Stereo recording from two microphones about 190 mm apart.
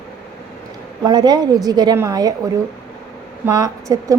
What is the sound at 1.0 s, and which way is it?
A woman's voice, 20° right (ahead or behind).